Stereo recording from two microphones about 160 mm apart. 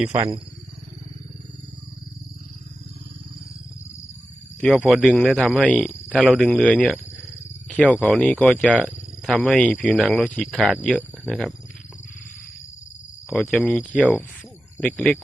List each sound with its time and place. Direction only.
0.1 s speech: 30° right (ahead or behind)
4.8 s speech: 5° right (ahead or behind)
8.6 s speech: 10° right (ahead or behind)
13.5 s speech: 5° left (ahead or behind)